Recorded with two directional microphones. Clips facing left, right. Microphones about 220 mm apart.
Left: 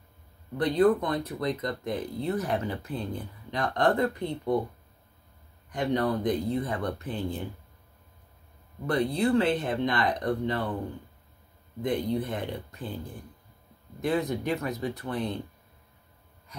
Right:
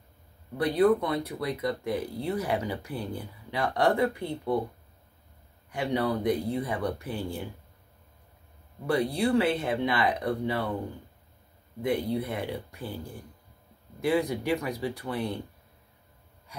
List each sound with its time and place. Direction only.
0.6 s speech: 10° right (ahead or behind)
5.7 s speech: 10° right (ahead or behind)
8.8 s speech: 10° right (ahead or behind)
11.8 s speech: 10° right (ahead or behind)
14.0 s speech: 10° right (ahead or behind)